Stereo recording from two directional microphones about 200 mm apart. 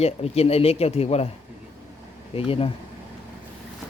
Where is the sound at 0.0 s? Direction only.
30° left (ahead or behind).